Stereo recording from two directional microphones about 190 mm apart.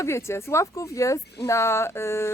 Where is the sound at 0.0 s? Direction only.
15° left (ahead or behind).